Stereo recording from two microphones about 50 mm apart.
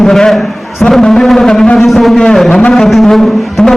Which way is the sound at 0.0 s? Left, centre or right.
Centre.